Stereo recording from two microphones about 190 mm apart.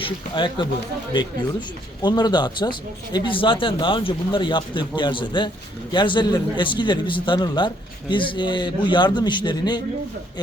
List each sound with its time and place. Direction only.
0.0 s speech: 25° left (ahead or behind)
2.0 s speech: 20° left (ahead or behind)